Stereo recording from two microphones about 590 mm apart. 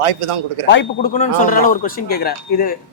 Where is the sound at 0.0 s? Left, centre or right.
Right.